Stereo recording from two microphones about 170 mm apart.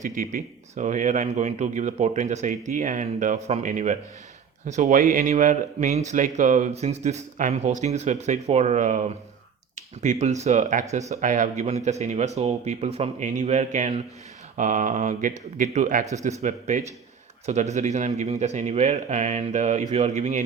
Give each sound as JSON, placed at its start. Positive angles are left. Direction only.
{"t": 0.0, "sound": "a man's voice", "side_deg": -50}